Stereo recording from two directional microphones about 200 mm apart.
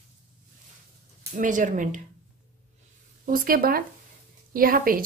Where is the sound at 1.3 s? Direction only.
40° right (ahead or behind).